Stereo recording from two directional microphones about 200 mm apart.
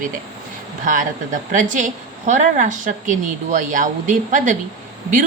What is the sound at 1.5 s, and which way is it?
A woman's voice, 40° right (ahead or behind).